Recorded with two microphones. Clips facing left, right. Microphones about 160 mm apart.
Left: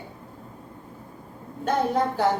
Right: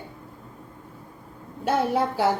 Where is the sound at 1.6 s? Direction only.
5° right (ahead or behind).